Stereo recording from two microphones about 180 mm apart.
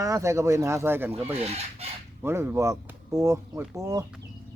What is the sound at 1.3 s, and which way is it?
Chicken, 35° right (ahead or behind).